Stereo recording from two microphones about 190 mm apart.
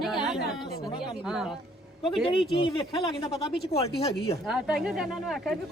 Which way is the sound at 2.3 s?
30° left (ahead or behind).